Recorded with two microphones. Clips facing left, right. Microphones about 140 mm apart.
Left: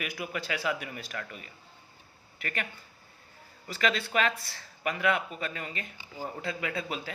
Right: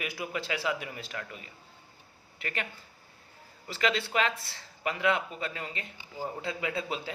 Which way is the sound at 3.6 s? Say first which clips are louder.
Even; 25° right (ahead or behind).